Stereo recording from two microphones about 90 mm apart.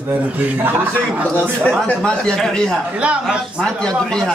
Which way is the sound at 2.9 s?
10° right (ahead or behind).